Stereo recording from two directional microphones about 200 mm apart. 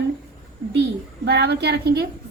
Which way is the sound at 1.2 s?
55° right (ahead or behind).